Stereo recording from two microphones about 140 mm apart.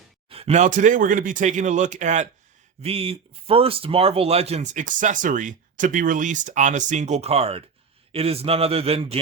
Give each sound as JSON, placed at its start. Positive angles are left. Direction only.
{"t": 0.3, "sound": "speech", "side_deg": -45}
{"t": 2.8, "sound": "a man's voice", "side_deg": -45}